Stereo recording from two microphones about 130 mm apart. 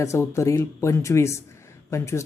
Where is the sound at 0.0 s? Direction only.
25° left (ahead or behind).